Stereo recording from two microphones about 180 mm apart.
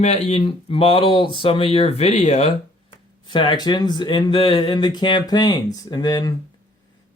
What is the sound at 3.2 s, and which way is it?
Speech, 25° left (ahead or behind).